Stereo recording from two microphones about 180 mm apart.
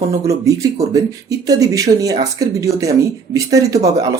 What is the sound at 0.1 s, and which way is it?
Speech, 20° right (ahead or behind).